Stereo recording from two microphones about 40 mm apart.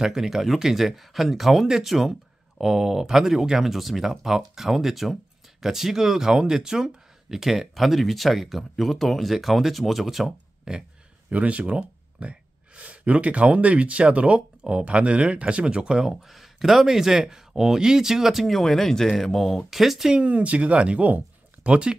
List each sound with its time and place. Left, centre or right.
0.0 s speech: centre
10.7 s speech: centre
11.2 s speech: right
16.3 s speech: centre
18.6 s speech: centre
19.7 s speech: centre
20.2 s speech: right